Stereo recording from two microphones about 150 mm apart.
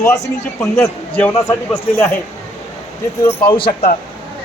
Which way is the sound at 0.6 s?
10° left (ahead or behind).